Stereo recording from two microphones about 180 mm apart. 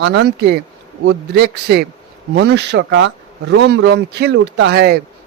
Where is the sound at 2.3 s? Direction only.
75° right (ahead or behind).